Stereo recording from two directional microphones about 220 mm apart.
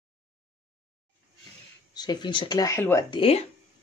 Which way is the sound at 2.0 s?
20° left (ahead or behind).